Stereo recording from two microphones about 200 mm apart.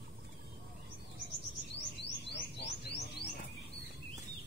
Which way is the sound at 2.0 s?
55° left (ahead or behind).